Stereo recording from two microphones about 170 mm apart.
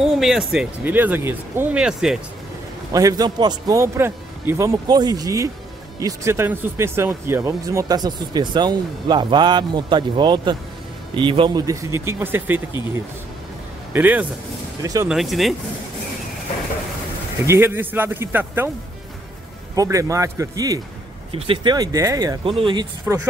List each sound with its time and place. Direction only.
0.0 s speech: centre (ahead or behind)
2.9 s speech: 20° right (ahead or behind)
13.9 s speech: 10° right (ahead or behind)
15.0 s speech: centre (ahead or behind)
17.5 s speech: 15° right (ahead or behind)
19.7 s speech: 20° right (ahead or behind)
21.3 s speech: 35° right (ahead or behind)
23.1 s speech: 15° right (ahead or behind)